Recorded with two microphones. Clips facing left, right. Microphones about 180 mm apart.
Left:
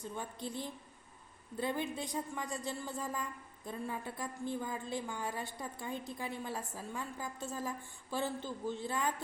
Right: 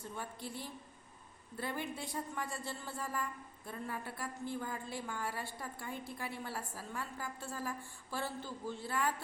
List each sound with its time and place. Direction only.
0.0 s a woman's voice: 20° left (ahead or behind)